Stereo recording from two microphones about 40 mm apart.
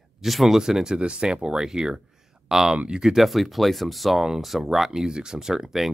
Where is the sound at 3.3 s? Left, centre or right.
Centre.